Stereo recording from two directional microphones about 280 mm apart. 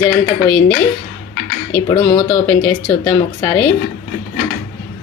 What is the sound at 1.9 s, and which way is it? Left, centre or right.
Speech, centre.